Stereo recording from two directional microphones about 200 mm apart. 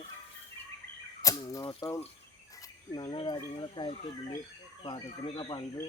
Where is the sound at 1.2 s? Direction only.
15° left (ahead or behind).